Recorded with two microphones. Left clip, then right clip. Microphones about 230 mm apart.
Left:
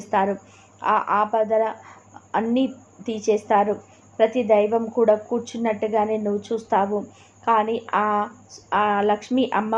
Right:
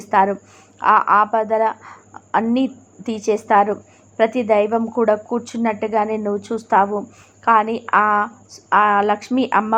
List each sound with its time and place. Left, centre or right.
0.0 s a woman's voice: centre